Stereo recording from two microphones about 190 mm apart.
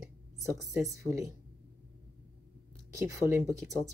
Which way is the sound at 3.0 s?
15° right (ahead or behind).